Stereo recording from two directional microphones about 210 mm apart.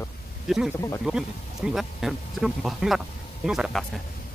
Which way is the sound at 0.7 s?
15° left (ahead or behind).